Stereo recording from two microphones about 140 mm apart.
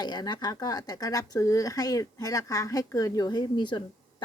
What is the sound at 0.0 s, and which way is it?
A woman's voice, 30° left (ahead or behind).